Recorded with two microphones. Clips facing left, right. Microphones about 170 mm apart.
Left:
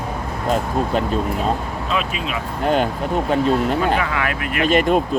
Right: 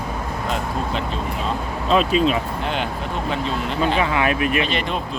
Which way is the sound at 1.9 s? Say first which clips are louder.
Right 8 dB; 30° right (ahead or behind).